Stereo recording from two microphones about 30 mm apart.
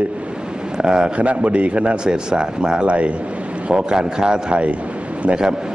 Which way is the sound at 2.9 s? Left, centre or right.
Right.